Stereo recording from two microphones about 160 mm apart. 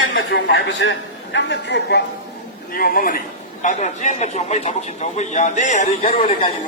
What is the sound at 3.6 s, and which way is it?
A man's voice, 50° left (ahead or behind).